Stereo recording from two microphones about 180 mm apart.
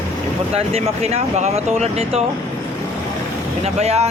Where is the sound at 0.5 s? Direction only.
35° right (ahead or behind).